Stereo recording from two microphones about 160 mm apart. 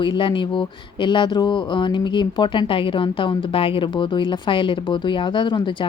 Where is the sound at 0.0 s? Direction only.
30° left (ahead or behind).